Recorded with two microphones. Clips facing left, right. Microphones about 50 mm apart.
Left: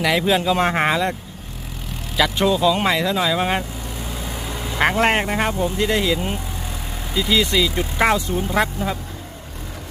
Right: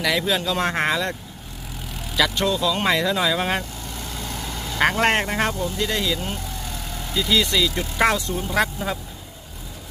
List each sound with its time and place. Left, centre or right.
0.0 s speech: centre
2.1 s speech: centre
2.8 s speech: centre
5.5 s speech: left; by 9.0 s centre